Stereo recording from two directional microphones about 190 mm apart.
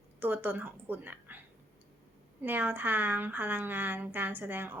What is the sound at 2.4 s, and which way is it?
A woman's voice, 10° right (ahead or behind).